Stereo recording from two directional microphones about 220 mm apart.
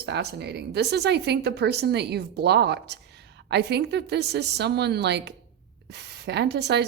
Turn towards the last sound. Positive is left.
turn(degrees=-50)  # may be behind; listen again after turning